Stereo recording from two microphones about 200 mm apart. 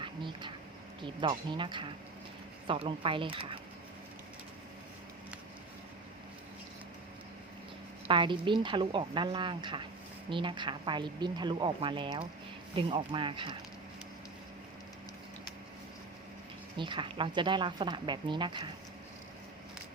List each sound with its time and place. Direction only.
0.0 s vehicle: 25° right (ahead or behind)
1.0 s speech: 25° right (ahead or behind)
8.0 s speech: 25° right (ahead or behind)
16.7 s speech: 25° right (ahead or behind)